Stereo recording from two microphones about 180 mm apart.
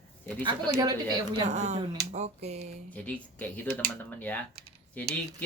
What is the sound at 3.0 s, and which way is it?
Speech, 5° left (ahead or behind).